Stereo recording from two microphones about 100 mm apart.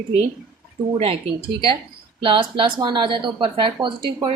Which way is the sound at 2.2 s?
55° right (ahead or behind).